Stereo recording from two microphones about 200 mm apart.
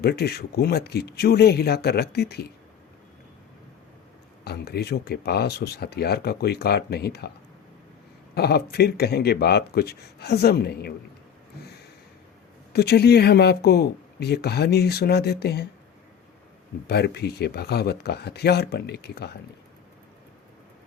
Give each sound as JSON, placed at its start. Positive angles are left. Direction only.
{"t": 0.0, "sound": "speech", "side_deg": 55}
{"t": 4.4, "sound": "speech", "side_deg": 55}
{"t": 8.4, "sound": "speech", "side_deg": 55}
{"t": 12.7, "sound": "speech", "side_deg": 55}
{"t": 16.8, "sound": "speech", "side_deg": 55}